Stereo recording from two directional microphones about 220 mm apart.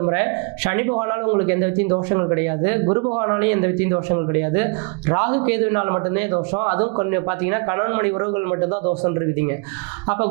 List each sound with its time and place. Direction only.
0.0 s speech: 20° right (ahead or behind)